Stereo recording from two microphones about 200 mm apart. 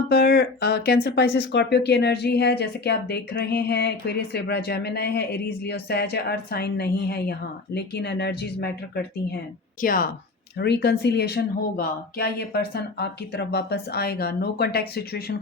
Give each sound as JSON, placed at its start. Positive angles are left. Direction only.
{"t": 0.1, "sound": "speech", "side_deg": 50}
{"t": 10.6, "sound": "speech", "side_deg": 55}